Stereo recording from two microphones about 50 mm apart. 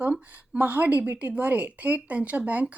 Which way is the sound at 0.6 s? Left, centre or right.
Right.